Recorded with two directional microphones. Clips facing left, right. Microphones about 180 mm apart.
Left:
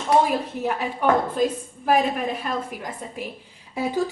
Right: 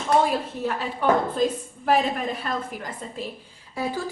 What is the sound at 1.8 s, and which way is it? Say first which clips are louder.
A woman's voice: left 1 dB; 10° left (ahead or behind).